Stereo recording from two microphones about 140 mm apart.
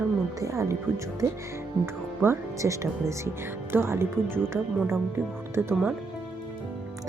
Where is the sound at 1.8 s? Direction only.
15° right (ahead or behind).